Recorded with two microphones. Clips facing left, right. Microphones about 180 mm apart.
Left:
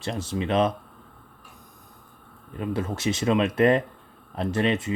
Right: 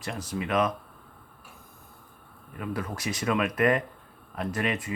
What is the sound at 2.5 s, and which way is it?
Speech, 25° left (ahead or behind).